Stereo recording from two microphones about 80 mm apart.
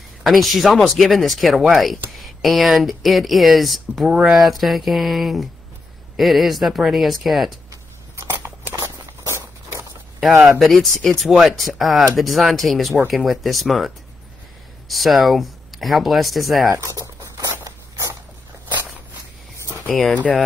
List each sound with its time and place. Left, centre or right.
0.2 s speech: centre
8.2 s a sound: right
10.6 s speech: centre
16.6 s a sound: right
17.6 s biting: right
19.9 s speech: centre